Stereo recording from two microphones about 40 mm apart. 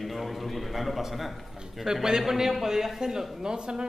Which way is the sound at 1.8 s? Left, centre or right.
Centre.